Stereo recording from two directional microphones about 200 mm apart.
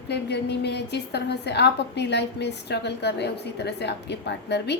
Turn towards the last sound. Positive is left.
turn(degrees=55)  # may be behind; listen again after turning